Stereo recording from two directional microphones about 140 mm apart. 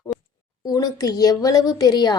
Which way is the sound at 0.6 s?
25° left (ahead or behind).